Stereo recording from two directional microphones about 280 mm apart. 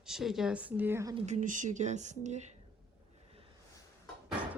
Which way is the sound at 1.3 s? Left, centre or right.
Right.